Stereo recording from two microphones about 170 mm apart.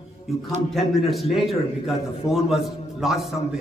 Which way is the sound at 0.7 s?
Centre (ahead or behind).